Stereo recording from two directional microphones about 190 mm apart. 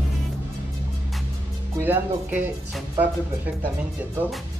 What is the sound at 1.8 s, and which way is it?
Speech, 10° right (ahead or behind).